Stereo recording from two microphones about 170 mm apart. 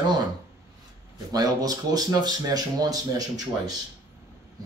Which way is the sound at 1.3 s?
20° right (ahead or behind).